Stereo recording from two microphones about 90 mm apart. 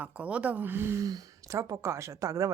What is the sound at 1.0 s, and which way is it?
Speech, 45° right (ahead or behind).